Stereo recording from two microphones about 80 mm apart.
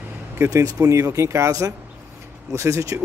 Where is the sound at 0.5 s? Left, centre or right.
Right.